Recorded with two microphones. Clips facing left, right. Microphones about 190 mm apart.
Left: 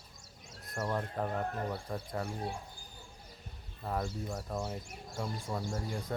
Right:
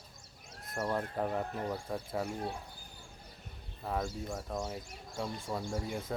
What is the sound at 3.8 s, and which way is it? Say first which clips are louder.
Speech: even; centre (ahead or behind).